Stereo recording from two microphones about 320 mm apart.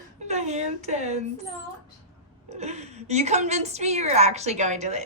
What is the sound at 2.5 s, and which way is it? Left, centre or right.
A woman's voice, right.